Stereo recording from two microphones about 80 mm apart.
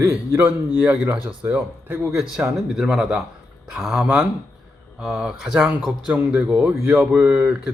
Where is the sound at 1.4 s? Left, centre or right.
Right.